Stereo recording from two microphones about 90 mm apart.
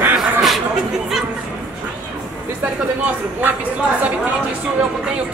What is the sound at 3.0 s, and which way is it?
Speech, 15° right (ahead or behind).